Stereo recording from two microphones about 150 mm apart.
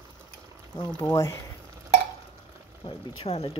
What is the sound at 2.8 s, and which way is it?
Speech, 40° left (ahead or behind).